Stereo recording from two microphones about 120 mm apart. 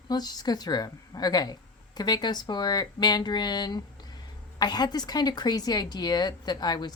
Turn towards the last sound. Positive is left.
turn(degrees=35)  # may be behind; listen again after turning